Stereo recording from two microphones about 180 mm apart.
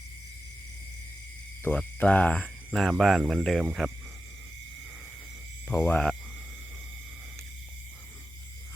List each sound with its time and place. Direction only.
1.6 s speech: 10° left (ahead or behind)
5.6 s speech: 10° left (ahead or behind)